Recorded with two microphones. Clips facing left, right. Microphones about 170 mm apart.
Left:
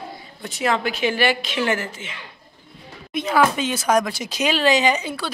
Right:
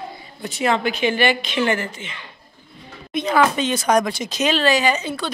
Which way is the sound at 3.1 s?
5° left (ahead or behind).